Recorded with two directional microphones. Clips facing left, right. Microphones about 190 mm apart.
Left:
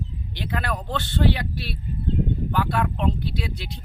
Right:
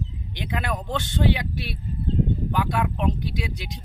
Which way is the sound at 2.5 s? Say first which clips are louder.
Left 1 dB; 15° right (ahead or behind).